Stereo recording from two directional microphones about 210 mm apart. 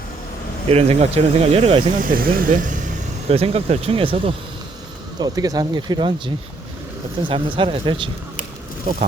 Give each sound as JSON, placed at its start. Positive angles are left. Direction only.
{"t": 0.7, "sound": "speech", "side_deg": -30}
{"t": 3.2, "sound": "speech", "side_deg": -30}